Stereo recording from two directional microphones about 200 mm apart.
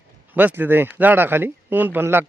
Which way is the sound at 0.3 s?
10° right (ahead or behind).